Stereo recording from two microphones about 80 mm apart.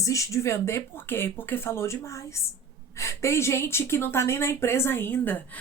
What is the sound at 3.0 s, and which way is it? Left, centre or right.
Speech, left.